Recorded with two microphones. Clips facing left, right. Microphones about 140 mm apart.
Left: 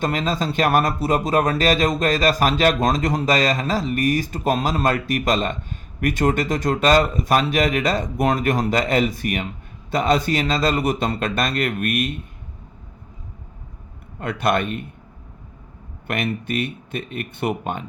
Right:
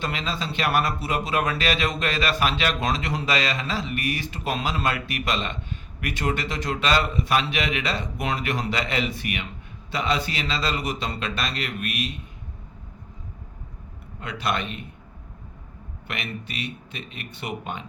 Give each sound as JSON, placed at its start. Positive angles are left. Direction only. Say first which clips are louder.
{"t": 0.0, "sound": "speech", "louder": "left 7 dB", "side_deg": 45}
{"t": 14.2, "sound": "speech", "louder": "left 7 dB", "side_deg": 50}
{"t": 16.0, "sound": "speech", "louder": "left 9 dB", "side_deg": 50}